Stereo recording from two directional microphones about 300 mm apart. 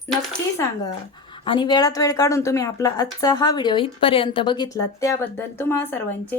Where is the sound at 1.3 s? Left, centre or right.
Centre.